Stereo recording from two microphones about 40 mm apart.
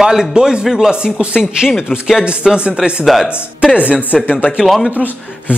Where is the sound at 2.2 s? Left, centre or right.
Right.